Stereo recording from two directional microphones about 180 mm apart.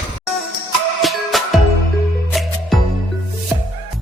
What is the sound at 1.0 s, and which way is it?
Music, centre (ahead or behind).